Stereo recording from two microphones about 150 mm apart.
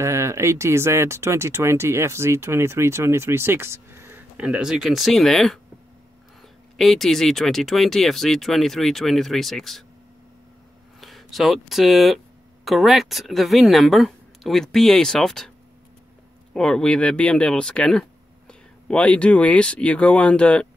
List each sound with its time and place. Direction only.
0.0 s speech: 20° right (ahead or behind); by 5.6 s centre (ahead or behind)
6.8 s speech: centre (ahead or behind)
11.0 s speech: centre (ahead or behind)
16.5 s speech: 5° left (ahead or behind)